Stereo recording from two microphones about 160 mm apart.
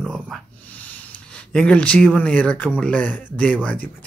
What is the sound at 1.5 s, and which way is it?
Speech, 5° left (ahead or behind).